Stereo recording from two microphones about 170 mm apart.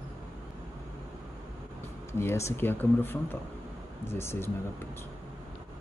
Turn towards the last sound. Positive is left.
turn(degrees=15)  # may be behind; listen again after turning